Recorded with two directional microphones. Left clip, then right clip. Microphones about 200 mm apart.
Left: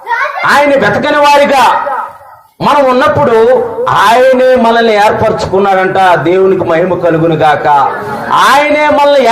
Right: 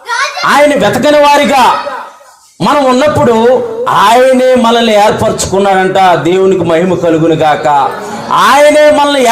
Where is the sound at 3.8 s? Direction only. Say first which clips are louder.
Right 1 dB; 40° right (ahead or behind).